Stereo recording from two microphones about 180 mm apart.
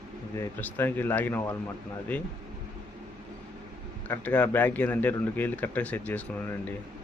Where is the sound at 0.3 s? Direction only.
10° left (ahead or behind).